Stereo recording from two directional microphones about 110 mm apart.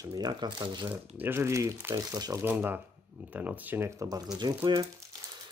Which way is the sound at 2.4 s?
20° right (ahead or behind).